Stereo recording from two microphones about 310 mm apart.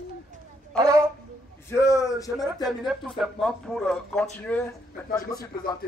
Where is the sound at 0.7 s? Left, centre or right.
Centre.